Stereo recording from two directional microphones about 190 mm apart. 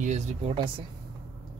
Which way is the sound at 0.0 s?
35° right (ahead or behind).